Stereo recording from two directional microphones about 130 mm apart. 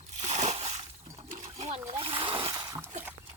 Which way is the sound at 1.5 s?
55° right (ahead or behind).